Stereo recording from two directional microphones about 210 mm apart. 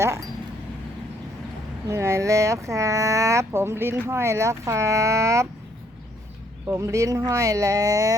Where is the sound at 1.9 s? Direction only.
10° right (ahead or behind).